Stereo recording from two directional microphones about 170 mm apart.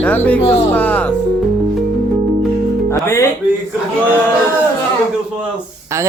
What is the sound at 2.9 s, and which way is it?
Speech, 15° left (ahead or behind).